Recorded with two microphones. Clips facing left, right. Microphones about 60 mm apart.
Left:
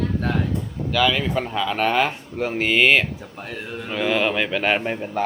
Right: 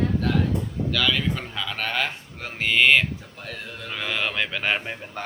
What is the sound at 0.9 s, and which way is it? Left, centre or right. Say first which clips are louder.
Speech: left 5 dB; centre.